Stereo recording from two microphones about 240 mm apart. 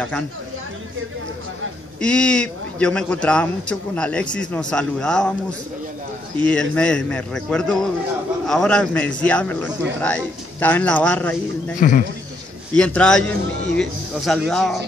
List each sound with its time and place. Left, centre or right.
2.0 s a man's voice: centre
11.8 s speech: left
12.7 s a man's voice: centre